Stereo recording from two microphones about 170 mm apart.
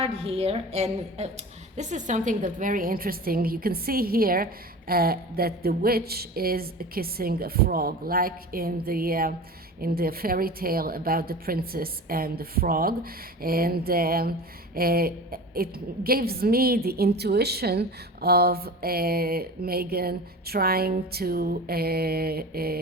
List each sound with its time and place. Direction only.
0.0 s a woman's voice: 35° right (ahead or behind); by 22.8 s 65° right (ahead or behind)